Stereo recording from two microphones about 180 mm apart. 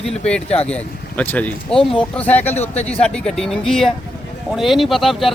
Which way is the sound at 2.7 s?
35° left (ahead or behind).